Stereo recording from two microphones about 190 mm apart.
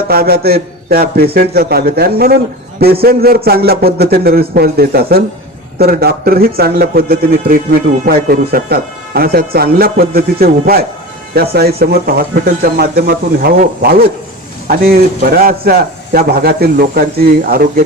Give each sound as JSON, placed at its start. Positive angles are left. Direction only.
{"t": 0.1, "sound": "a man's voice", "side_deg": -55}